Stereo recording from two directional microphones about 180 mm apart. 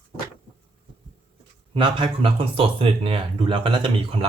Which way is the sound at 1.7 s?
30° right (ahead or behind).